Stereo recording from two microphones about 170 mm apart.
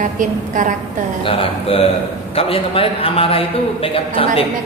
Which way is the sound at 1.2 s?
35° left (ahead or behind).